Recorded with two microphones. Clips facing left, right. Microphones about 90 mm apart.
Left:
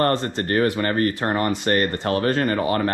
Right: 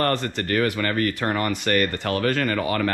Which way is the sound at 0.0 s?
25° left (ahead or behind).